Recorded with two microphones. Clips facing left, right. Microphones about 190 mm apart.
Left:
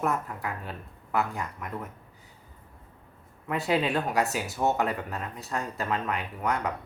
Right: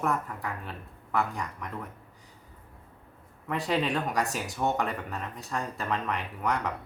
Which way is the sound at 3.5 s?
5° left (ahead or behind).